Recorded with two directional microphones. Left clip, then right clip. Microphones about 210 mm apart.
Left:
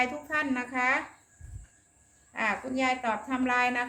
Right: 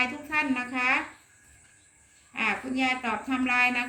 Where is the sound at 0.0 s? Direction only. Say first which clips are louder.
Right 2 dB; 25° left (ahead or behind).